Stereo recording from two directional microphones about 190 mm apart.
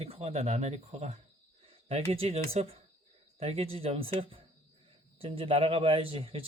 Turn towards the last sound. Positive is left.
turn(degrees=-30)  # may be behind; listen again after turning